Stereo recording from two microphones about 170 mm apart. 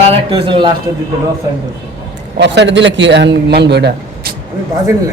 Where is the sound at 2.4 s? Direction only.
90° right.